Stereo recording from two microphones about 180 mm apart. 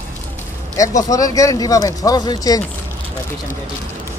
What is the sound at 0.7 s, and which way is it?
Speech, 20° left (ahead or behind).